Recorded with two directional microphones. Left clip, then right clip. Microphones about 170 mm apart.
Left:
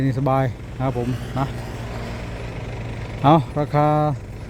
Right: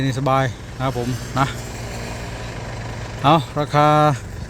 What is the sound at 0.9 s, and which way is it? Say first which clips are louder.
Speech: even; centre (ahead or behind).